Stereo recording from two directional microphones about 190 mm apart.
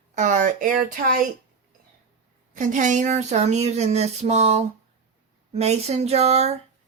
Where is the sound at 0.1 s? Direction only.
40° right (ahead or behind).